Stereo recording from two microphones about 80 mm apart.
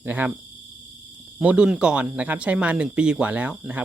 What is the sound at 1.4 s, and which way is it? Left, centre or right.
Speech, centre.